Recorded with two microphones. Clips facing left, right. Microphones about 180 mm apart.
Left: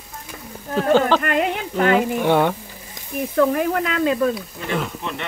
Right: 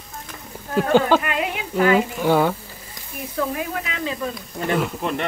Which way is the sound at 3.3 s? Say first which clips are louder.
Left 7 dB; 60° left (ahead or behind).